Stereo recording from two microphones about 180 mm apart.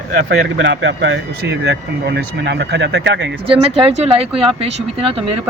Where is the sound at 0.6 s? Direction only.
90° right.